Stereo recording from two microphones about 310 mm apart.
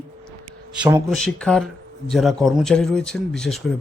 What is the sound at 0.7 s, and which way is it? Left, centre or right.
Speech, centre.